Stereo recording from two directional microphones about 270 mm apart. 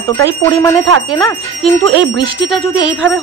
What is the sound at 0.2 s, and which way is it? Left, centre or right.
Speech, centre.